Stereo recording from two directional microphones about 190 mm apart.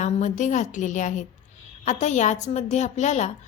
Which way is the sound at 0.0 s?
40° left (ahead or behind).